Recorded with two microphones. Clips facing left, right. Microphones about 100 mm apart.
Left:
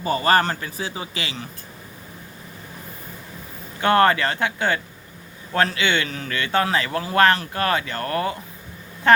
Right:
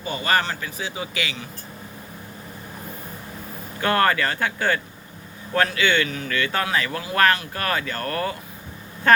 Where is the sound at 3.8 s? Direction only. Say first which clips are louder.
Left 3 dB; 25° left (ahead or behind).